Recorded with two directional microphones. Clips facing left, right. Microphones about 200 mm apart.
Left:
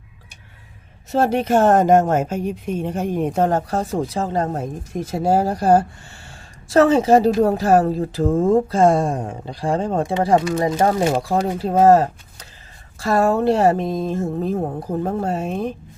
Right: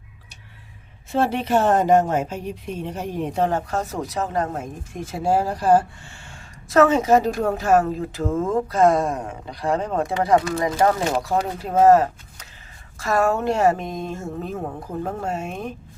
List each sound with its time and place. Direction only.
1.1 s speech: 45° left (ahead or behind)
6.2 s a woman's voice: 30° left (ahead or behind)